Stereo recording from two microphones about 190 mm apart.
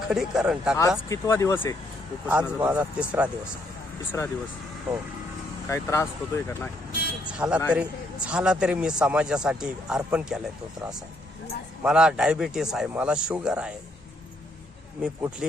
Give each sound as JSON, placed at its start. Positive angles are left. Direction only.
{"t": 0.1, "sound": "a man's voice", "side_deg": -5}
{"t": 1.1, "sound": "speech", "side_deg": 15}
{"t": 2.2, "sound": "a man's voice", "side_deg": -10}
{"t": 4.1, "sound": "speech", "side_deg": 15}
{"t": 5.6, "sound": "speech", "side_deg": 15}
{"t": 7.3, "sound": "a man's voice", "side_deg": -5}
{"t": 11.8, "sound": "a man's voice", "side_deg": -5}
{"t": 15.0, "sound": "a man's voice", "side_deg": -5}